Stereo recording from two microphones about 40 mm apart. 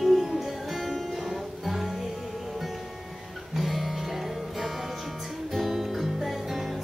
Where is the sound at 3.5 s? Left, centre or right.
Centre.